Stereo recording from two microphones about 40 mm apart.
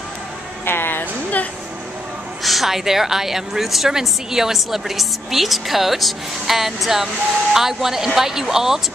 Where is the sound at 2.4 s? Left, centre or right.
Centre.